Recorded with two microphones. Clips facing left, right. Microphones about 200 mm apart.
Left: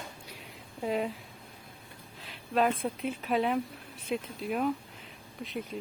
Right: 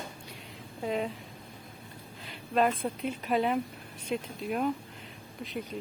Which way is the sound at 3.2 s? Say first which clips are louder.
Right 1 dB; centre (ahead or behind).